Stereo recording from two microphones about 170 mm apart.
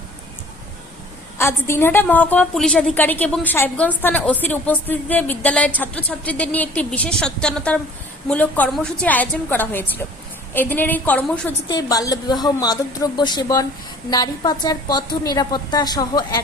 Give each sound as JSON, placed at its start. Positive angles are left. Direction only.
{"t": 1.4, "sound": "a woman's voice", "side_deg": 15}
{"t": 11.7, "sound": "a woman's voice", "side_deg": 20}